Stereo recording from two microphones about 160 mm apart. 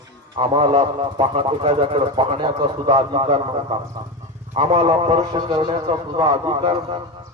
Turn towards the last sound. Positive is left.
turn(degrees=-35)  # may be behind; listen again after turning